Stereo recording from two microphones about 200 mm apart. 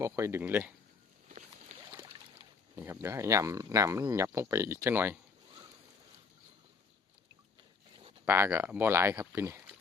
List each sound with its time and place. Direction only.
0.0 s speech: 15° right (ahead or behind)
1.9 s speech: 15° right (ahead or behind)
7.9 s a sound: 25° right (ahead or behind)
8.3 s speech: 10° right (ahead or behind)